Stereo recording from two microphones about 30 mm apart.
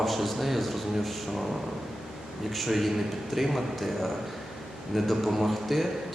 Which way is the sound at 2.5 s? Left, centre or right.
Centre.